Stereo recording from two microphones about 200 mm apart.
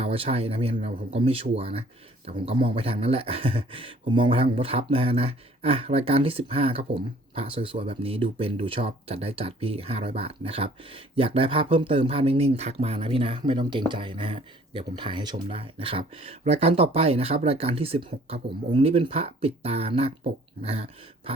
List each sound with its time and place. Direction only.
0.0 s speech: 30° right (ahead or behind)